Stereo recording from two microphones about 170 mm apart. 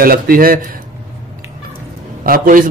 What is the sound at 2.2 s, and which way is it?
Speech, 55° right (ahead or behind).